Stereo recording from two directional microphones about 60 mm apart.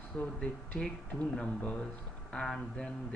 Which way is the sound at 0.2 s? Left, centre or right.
Centre.